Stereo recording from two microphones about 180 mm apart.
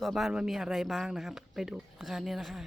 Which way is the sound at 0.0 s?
Centre (ahead or behind).